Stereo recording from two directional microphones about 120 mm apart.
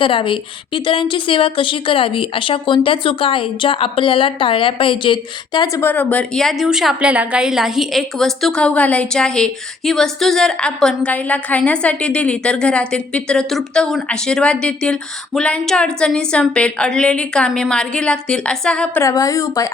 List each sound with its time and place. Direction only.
0.0 s a woman's voice: 45° left (ahead or behind)
5.7 s a woman's voice: 15° left (ahead or behind)
19.0 s a woman's voice: 30° left (ahead or behind)